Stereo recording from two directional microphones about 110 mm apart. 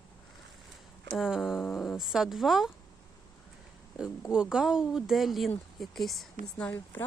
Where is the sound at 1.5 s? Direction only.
20° left (ahead or behind).